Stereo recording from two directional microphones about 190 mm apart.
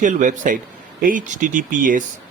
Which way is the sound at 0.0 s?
40° right (ahead or behind).